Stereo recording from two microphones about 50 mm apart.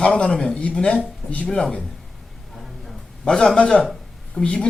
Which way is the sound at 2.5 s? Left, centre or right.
Centre.